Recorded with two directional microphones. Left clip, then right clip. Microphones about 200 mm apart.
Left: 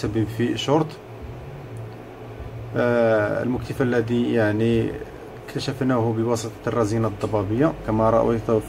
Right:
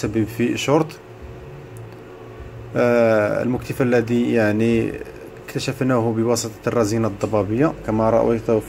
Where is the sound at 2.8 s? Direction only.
25° right (ahead or behind).